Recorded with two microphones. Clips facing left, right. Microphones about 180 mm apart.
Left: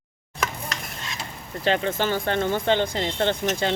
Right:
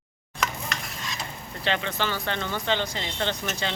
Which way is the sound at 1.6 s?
45° left (ahead or behind).